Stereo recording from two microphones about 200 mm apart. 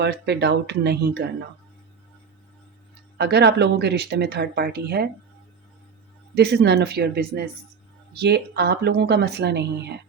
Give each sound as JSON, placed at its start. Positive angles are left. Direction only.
{"t": 0.0, "sound": "speech", "side_deg": -55}
{"t": 3.2, "sound": "speech", "side_deg": -55}
{"t": 6.3, "sound": "speech", "side_deg": -55}